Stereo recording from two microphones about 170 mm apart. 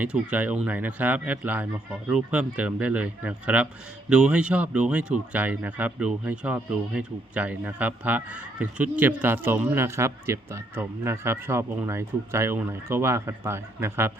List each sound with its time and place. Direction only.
0.0 s speech: 10° right (ahead or behind)